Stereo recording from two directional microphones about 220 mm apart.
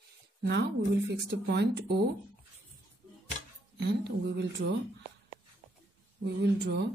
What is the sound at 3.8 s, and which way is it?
Speech, 50° right (ahead or behind).